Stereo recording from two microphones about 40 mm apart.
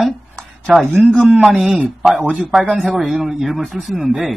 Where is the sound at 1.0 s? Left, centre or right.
Right.